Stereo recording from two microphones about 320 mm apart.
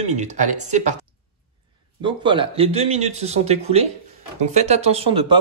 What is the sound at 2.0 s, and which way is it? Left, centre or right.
Speech, centre.